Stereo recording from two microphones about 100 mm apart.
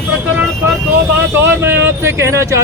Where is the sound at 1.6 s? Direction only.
25° right (ahead or behind).